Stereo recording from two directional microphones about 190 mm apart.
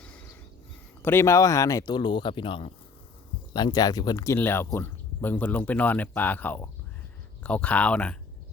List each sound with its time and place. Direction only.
1.0 s speech: 15° left (ahead or behind)